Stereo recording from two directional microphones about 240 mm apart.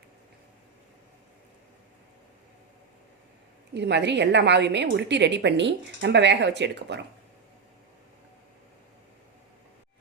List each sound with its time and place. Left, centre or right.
3.8 s a woman's voice: right